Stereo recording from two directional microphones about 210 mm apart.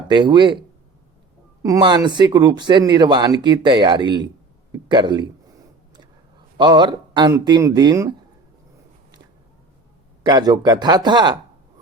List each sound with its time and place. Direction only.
0.1 s speech: 20° right (ahead or behind)
1.6 s speech: 20° right (ahead or behind)
6.6 s speech: 20° right (ahead or behind)
10.2 s speech: 20° right (ahead or behind)